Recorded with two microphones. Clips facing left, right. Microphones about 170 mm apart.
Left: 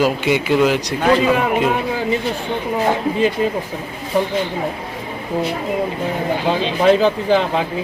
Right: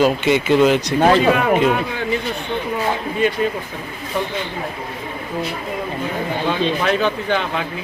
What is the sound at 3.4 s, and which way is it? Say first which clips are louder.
Speech: left 1 dB; 20° left (ahead or behind).